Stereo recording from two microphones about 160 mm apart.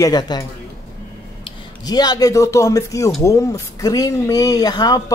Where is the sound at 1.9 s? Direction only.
25° left (ahead or behind).